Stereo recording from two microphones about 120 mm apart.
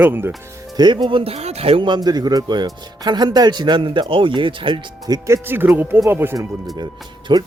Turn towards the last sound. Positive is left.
turn(degrees=-35)  # may be behind; listen again after turning